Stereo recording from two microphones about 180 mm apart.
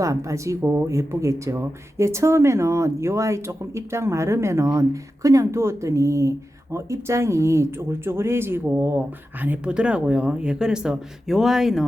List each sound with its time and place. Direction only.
0.0 s speech: 20° right (ahead or behind); by 11.9 s centre (ahead or behind)